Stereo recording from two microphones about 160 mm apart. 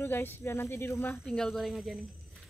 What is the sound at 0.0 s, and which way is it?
Speech, 15° left (ahead or behind).